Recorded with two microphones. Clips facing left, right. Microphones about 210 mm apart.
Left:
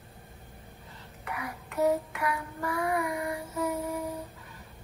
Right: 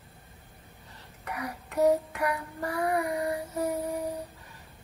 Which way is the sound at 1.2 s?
35° right (ahead or behind).